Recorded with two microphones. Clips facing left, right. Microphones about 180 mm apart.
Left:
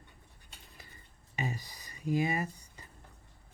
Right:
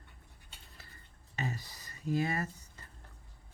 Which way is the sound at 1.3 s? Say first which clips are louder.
Left 1 dB; 15° left (ahead or behind).